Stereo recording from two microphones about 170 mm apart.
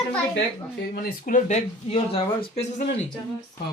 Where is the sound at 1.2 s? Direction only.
50° left (ahead or behind); by 2.6 s 35° left (ahead or behind).